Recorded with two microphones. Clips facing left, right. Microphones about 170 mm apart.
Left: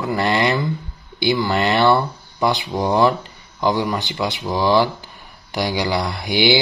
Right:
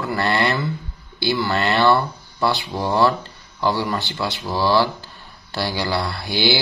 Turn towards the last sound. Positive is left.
turn(degrees=15)  # may be behind; listen again after turning